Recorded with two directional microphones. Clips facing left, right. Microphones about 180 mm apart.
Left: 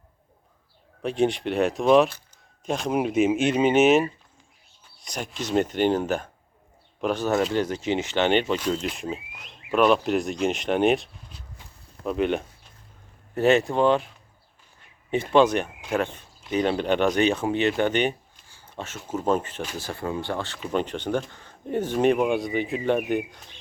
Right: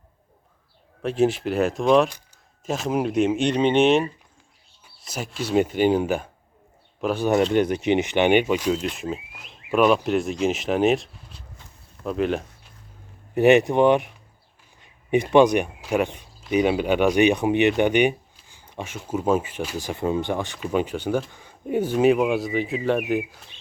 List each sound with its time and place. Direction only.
1.0 s speech: 5° right (ahead or behind)
2.0 s a sound: 15° right (ahead or behind)
2.6 s speech: centre (ahead or behind)
7.5 s speech: 20° right (ahead or behind); by 12.5 s centre (ahead or behind)
13.3 s speech: 15° right (ahead or behind)
14.8 s a sound: 15° right (ahead or behind)
15.8 s speech: 10° right (ahead or behind)